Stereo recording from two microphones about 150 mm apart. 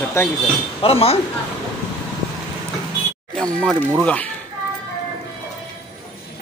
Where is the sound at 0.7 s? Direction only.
40° left (ahead or behind).